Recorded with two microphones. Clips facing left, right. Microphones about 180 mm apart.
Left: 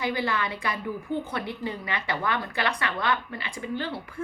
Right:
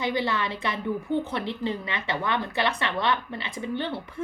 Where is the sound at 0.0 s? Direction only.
20° right (ahead or behind).